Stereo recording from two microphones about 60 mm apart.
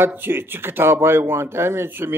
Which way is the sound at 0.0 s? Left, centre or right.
Right.